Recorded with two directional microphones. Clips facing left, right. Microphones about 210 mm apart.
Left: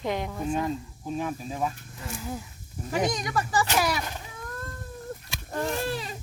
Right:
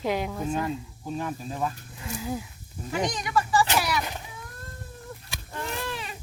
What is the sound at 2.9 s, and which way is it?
Speech, 40° left (ahead or behind).